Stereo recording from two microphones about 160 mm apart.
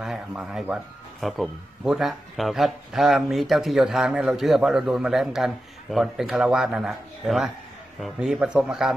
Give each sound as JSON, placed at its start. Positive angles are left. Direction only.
{"t": 0.0, "sound": "speech", "side_deg": -5}